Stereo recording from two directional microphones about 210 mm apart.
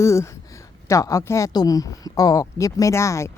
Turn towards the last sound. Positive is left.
turn(degrees=15)  # may be behind; listen again after turning